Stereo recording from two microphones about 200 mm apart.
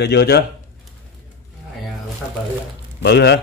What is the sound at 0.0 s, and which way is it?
Speech, 55° left (ahead or behind).